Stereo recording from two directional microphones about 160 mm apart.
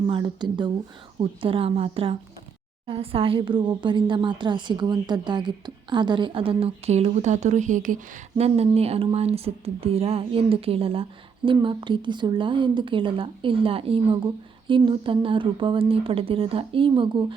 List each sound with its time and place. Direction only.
0.1 s a woman's voice: 30° right (ahead or behind)